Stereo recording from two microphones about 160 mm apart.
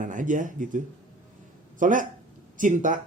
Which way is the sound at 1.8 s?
55° right (ahead or behind).